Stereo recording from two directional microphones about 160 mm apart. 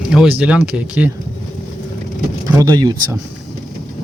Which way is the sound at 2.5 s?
20° right (ahead or behind).